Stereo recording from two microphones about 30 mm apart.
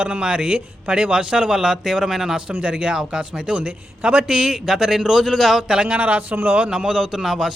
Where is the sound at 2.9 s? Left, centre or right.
Centre.